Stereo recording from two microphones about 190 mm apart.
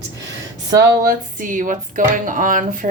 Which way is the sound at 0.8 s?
50° right (ahead or behind).